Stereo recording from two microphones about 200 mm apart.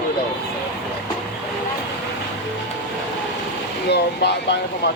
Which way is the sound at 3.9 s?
55° left (ahead or behind).